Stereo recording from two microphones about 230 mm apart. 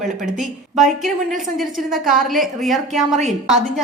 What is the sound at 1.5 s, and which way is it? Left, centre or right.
A woman's voice, centre.